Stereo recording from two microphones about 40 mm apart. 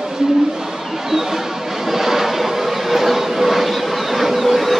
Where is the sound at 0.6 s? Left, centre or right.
Centre.